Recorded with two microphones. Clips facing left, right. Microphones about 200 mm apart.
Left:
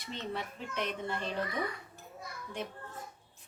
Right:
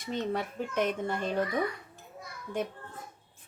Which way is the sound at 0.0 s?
45° right (ahead or behind).